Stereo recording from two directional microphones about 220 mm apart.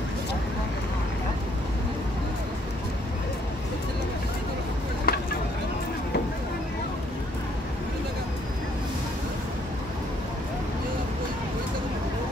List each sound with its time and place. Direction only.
5.1 s vehicle: 45° left (ahead or behind)